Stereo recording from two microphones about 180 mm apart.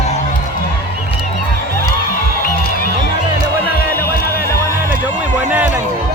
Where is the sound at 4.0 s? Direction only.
15° left (ahead or behind).